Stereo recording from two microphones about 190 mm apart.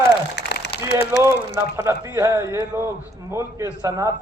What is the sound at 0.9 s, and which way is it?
A man's voice, 10° right (ahead or behind).